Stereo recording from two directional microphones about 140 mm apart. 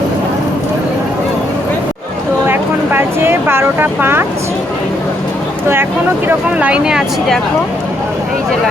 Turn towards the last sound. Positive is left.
turn(degrees=-5)  # may be behind; listen again after turning